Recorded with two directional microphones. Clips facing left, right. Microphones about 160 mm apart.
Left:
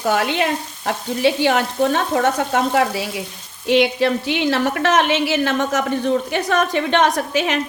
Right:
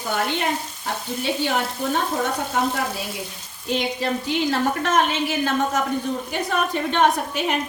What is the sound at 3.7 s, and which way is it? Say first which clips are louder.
A woman's voice: left 8 dB; 80° left.